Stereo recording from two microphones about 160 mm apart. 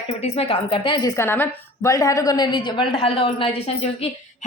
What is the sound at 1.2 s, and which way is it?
A woman's voice, 15° left (ahead or behind).